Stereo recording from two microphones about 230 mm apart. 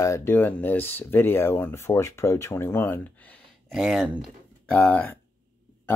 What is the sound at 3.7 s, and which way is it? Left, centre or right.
Speech, centre.